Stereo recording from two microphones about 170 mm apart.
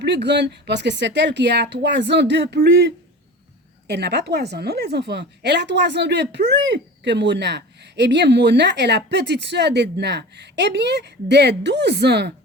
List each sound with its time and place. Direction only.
0.0 s speech: 90° right